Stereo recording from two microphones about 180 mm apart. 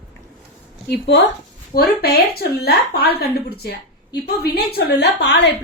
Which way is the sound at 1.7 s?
60° left (ahead or behind).